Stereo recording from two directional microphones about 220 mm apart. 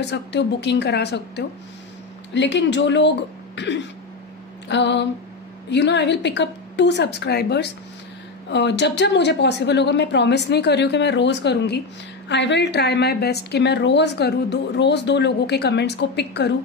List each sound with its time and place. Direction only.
0.1 s a woman's voice: 50° left (ahead or behind)